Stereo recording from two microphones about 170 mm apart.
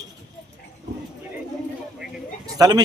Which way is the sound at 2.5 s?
20° right (ahead or behind).